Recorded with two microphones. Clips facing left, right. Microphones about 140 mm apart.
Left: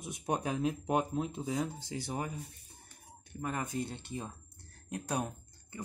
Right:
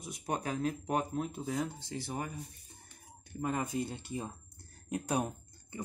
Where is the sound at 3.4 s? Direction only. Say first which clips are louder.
Right 2 dB; 5° right (ahead or behind).